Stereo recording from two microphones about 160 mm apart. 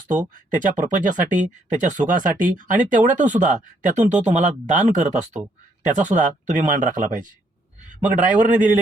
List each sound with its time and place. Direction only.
0.3 s a man's voice: 55° right (ahead or behind)